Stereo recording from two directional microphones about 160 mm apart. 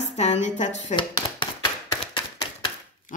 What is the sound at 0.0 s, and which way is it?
Speech, 45° left (ahead or behind).